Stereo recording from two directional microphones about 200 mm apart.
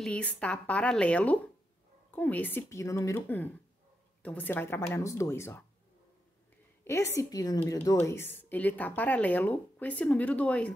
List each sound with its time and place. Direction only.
0.0 s speech: 5° left (ahead or behind)
6.8 s speech: 10° left (ahead or behind)